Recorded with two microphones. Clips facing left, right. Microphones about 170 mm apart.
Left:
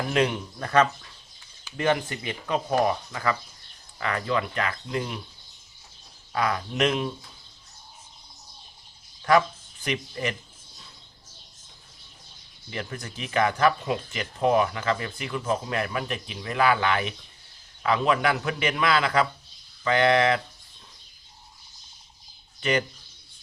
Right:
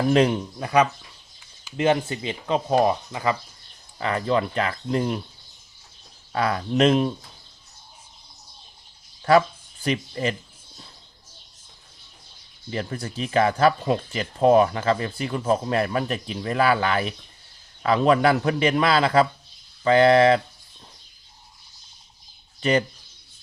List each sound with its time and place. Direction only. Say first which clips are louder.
0.1 s speech: right 4 dB; 35° right (ahead or behind)
0.6 s speech: right 1 dB; 15° right (ahead or behind); by 5.2 s 40° right (ahead or behind)
6.3 s speech: right 4 dB; 35° right (ahead or behind)
9.3 s speech: right 3 dB; 30° right (ahead or behind)
12.7 s speech: right 5 dB; 35° right (ahead or behind)